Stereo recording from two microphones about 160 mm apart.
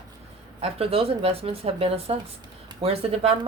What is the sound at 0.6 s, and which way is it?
Speech, 40° right (ahead or behind).